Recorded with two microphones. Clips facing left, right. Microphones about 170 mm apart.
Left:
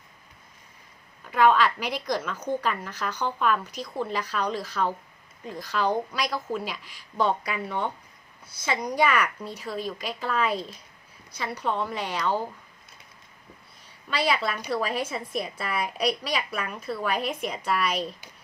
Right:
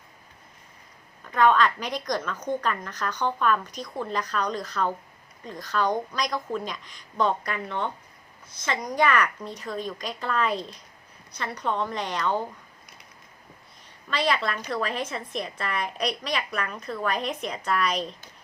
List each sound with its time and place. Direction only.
1.3 s a woman's voice: 10° left (ahead or behind)
14.1 s a woman's voice: 10° left (ahead or behind)